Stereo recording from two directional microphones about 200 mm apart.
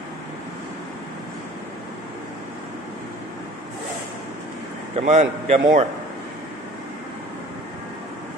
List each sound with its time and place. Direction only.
4.9 s a man's voice: 35° right (ahead or behind)